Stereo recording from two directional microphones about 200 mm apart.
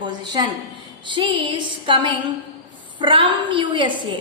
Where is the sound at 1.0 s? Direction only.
25° right (ahead or behind).